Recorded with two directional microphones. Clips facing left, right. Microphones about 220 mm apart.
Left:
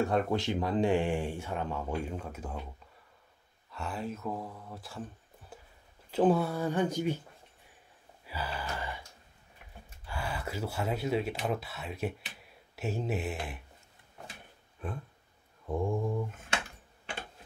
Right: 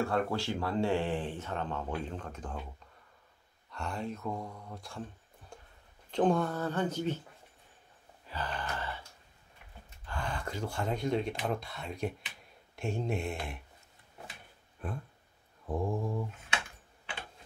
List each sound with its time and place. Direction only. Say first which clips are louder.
0.0 s speech: left 2 dB; 20° left (ahead or behind)
3.7 s speech: even; 5° left (ahead or behind)
5.5 s a sound: left 1 dB; 5° left (ahead or behind)
6.0 s speech: left 2 dB; 5° left (ahead or behind)
8.3 s a sound: even; 10° left (ahead or behind)
10.0 s speech: even; 10° left (ahead or behind)
14.8 s speech: left 1 dB; centre (ahead or behind)